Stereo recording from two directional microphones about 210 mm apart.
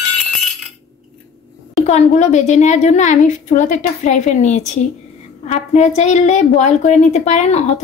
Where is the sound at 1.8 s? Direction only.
35° left (ahead or behind).